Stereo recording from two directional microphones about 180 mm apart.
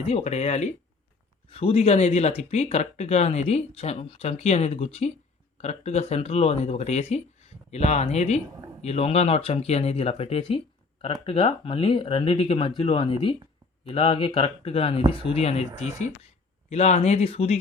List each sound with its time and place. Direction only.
0.0 s speech: 35° left (ahead or behind)